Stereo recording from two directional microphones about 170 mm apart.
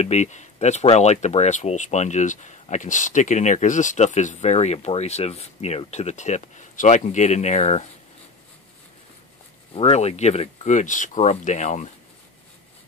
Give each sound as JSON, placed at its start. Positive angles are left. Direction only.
{"t": 0.0, "sound": "speech", "side_deg": 45}
{"t": 9.8, "sound": "speech", "side_deg": 35}